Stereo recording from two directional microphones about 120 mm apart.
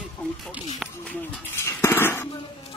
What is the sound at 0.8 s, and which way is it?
Speech, centre (ahead or behind).